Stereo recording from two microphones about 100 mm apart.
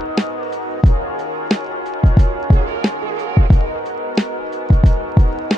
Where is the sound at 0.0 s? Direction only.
Centre (ahead or behind).